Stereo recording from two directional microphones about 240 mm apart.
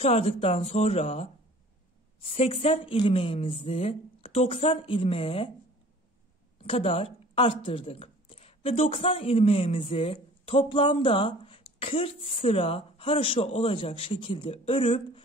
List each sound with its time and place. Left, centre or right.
0.0 s speech: left
6.6 s speech: left